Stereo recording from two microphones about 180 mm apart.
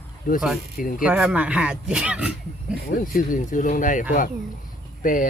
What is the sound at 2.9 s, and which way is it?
Speech, 50° left (ahead or behind).